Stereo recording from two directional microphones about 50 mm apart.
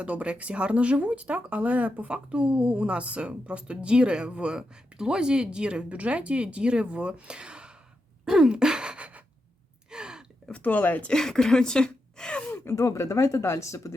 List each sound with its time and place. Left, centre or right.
0.0 s a woman's voice: right
8.2 s gasp: centre
9.9 s gasp: centre
10.6 s speech: left
11.1 s speech: centre
12.6 s speech: left